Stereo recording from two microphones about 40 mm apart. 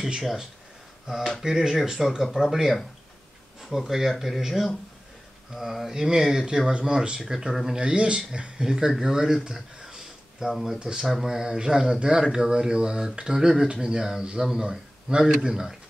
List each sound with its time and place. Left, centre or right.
1.0 s a sound: centre
1.4 s speech: centre
3.6 s speech: centre
7.8 s speech: right